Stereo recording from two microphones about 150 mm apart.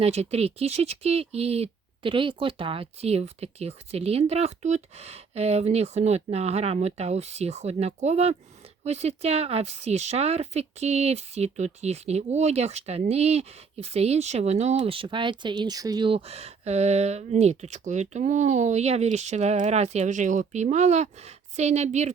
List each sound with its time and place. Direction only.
0.0 s speech: 45° right (ahead or behind)